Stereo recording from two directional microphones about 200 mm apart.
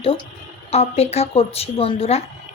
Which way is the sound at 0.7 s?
30° left (ahead or behind).